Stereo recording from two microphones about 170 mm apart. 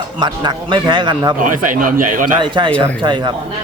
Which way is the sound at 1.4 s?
50° right (ahead or behind).